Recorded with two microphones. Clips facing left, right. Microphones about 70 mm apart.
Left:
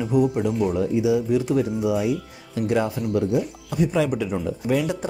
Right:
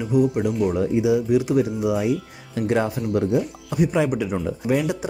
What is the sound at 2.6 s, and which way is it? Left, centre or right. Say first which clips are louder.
Speech: right 1 dB; right.